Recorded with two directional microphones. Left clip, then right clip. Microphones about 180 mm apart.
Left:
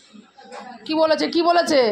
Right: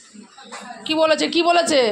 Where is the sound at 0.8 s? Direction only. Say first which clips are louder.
Right 1 dB; centre (ahead or behind).